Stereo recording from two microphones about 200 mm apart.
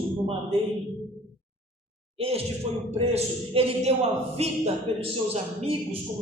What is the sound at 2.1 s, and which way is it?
A man's voice, 30° right (ahead or behind).